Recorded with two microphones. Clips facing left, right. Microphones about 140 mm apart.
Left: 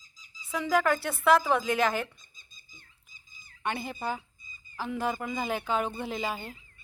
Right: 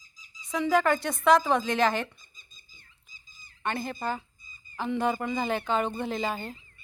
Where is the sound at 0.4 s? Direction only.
5° left (ahead or behind).